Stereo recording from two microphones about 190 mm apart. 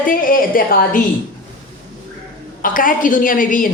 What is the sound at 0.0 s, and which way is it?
A woman's voice, 45° left (ahead or behind).